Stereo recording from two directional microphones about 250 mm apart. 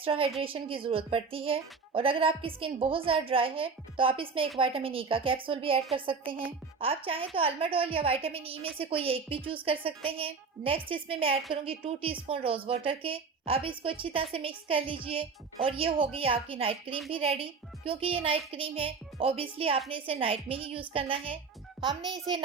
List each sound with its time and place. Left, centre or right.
0.0 s a woman's voice: right